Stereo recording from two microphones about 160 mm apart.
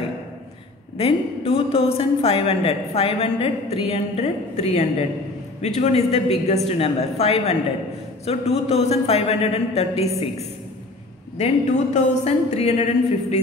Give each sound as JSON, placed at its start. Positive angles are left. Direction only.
{"t": 0.9, "sound": "a woman's voice", "side_deg": 35}
{"t": 11.3, "sound": "a woman's voice", "side_deg": 40}